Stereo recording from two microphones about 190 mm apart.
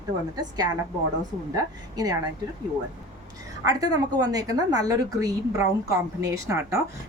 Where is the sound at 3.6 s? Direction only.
20° right (ahead or behind).